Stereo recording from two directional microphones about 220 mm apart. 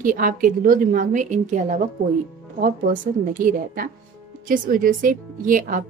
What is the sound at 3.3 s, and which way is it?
Speech, 40° right (ahead or behind).